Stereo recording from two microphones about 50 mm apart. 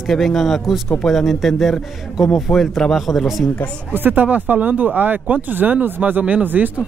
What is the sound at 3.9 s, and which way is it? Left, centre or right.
Speech, right.